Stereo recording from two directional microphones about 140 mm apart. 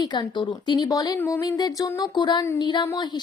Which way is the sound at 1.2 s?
15° left (ahead or behind).